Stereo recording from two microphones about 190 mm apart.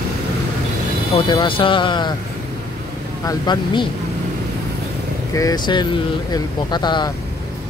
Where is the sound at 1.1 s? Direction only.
25° left (ahead or behind).